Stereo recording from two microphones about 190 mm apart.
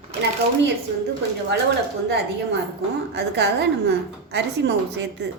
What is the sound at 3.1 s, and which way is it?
A woman's voice, 60° right (ahead or behind).